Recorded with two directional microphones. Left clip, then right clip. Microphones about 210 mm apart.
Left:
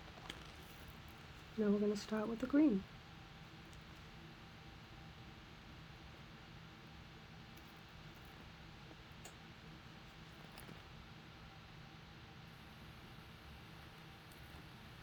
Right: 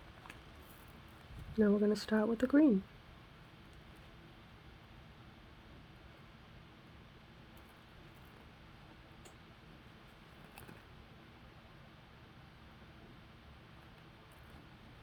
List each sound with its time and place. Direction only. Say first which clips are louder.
1.6 s speech: right 5 dB; 45° right (ahead or behind)